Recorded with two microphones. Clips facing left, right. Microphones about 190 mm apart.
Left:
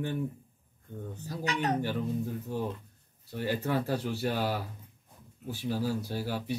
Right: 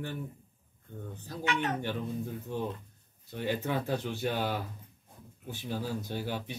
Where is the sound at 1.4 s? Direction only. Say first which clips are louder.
Left 2 dB; 35° left (ahead or behind).